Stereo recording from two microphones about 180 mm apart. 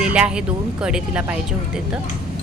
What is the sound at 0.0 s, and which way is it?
Speech, 5° right (ahead or behind).